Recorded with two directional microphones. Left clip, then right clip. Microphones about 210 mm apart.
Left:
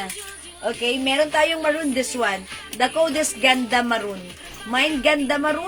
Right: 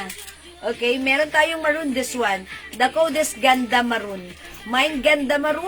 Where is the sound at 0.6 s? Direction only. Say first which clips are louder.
Right 2 dB; 10° right (ahead or behind).